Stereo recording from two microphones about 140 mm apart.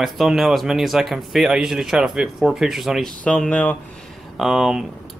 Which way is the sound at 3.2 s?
10° left (ahead or behind).